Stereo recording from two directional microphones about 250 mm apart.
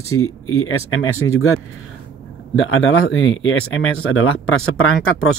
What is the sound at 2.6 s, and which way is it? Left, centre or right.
Speech, left.